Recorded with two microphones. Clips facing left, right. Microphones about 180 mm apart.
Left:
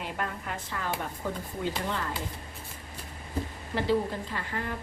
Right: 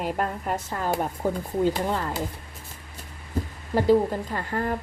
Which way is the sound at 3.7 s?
45° right (ahead or behind).